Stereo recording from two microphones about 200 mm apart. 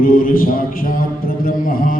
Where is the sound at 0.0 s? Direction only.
45° left (ahead or behind).